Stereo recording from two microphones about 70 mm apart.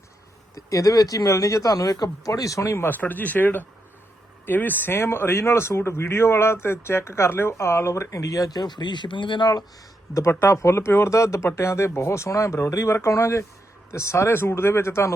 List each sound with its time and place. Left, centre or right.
0.5 s speech: left
2.8 s speech: left
10.2 s speech: left